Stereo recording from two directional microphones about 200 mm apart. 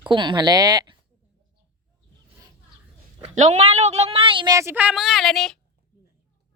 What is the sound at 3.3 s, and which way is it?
A woman's voice, 35° right (ahead or behind).